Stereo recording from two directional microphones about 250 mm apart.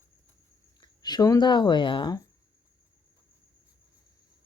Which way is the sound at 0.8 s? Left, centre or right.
Centre.